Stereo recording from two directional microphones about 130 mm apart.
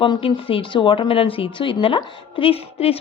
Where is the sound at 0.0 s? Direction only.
40° left (ahead or behind).